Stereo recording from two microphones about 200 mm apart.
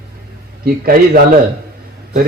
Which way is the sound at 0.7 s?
50° right (ahead or behind).